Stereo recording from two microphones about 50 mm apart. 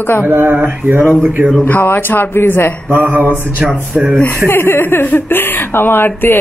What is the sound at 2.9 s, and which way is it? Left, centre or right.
Mantra, right.